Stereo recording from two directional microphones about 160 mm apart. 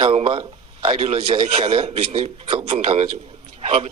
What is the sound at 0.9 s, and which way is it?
Speech, 40° right (ahead or behind).